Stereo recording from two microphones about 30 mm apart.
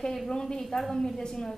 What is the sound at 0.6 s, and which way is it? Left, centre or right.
A woman's voice, centre.